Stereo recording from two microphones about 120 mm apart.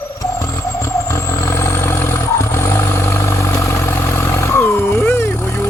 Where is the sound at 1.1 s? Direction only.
20° left (ahead or behind).